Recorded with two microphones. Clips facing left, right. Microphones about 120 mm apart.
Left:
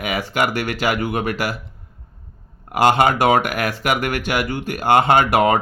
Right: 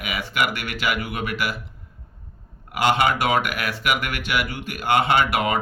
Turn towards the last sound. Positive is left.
turn(degrees=45)  # may be behind; listen again after turning